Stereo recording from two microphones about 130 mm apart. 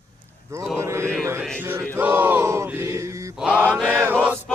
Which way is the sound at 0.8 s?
20° right (ahead or behind).